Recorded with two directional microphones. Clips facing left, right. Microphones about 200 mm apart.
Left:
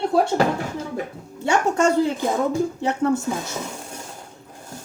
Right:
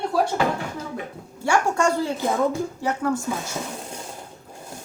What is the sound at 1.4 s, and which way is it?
Speech, 20° left (ahead or behind).